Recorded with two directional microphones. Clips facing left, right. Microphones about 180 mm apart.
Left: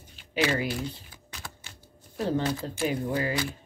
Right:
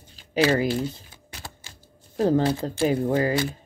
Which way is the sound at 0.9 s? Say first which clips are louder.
Right 2 dB; 35° right (ahead or behind).